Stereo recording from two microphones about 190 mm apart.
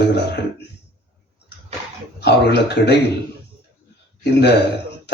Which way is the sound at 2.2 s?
60° left (ahead or behind).